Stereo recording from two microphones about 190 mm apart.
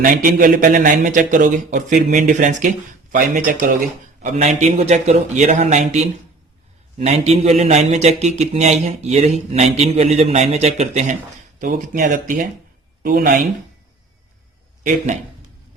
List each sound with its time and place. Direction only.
0.0 s a man's voice: 45° right (ahead or behind)